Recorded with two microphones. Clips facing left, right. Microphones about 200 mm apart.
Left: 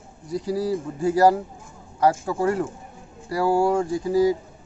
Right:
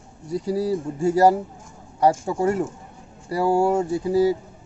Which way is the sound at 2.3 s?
25° right (ahead or behind).